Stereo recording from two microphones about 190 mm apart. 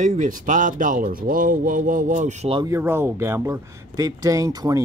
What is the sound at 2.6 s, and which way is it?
Speech, 15° right (ahead or behind).